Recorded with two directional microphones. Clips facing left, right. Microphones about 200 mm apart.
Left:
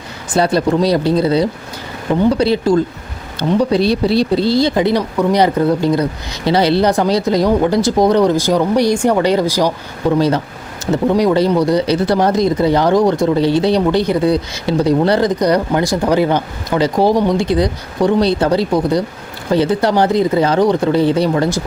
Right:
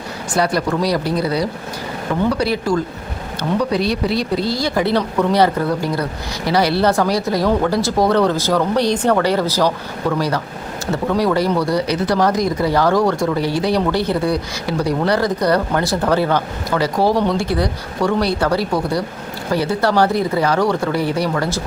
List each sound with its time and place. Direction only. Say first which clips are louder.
0.3 s speech: left 5 dB; 25° left (ahead or behind)